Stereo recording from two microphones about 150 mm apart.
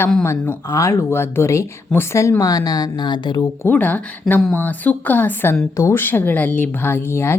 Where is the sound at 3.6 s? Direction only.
10° left (ahead or behind).